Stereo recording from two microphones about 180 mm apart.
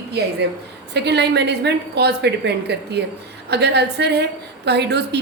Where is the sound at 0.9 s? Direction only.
70° right (ahead or behind).